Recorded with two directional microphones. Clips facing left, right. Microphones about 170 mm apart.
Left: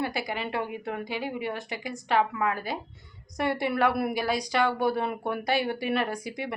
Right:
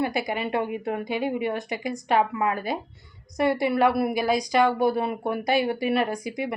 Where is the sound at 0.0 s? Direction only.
20° right (ahead or behind).